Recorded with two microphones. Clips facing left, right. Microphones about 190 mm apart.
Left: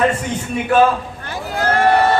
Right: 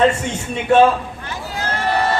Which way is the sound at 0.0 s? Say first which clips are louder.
Right 1 dB; 25° right (ahead or behind).